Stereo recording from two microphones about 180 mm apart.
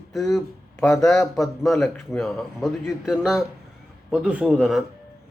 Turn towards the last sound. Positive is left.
turn(degrees=-5)  # may be behind; listen again after turning